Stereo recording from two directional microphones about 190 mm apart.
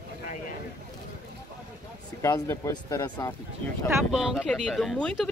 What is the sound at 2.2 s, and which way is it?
Speech, 15° left (ahead or behind).